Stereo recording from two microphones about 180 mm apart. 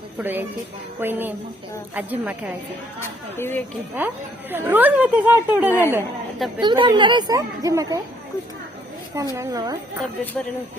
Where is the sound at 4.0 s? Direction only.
10° right (ahead or behind).